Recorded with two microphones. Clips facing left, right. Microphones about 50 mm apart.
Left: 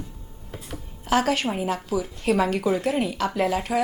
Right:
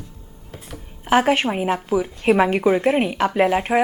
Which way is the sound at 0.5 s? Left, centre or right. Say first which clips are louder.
Even; centre.